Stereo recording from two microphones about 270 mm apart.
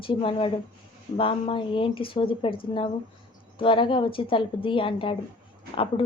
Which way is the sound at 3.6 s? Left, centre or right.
Centre.